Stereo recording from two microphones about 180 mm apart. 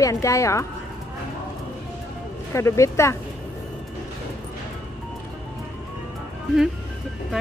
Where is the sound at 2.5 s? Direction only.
15° left (ahead or behind).